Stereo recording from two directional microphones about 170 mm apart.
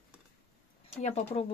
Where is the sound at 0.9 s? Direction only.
35° left (ahead or behind).